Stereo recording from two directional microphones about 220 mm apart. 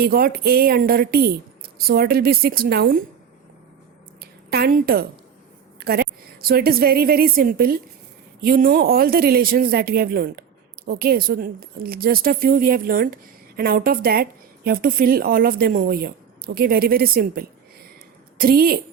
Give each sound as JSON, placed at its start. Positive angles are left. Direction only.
{"t": 0.0, "sound": "a woman's voice", "side_deg": -40}
{"t": 4.5, "sound": "a woman's voice", "side_deg": -45}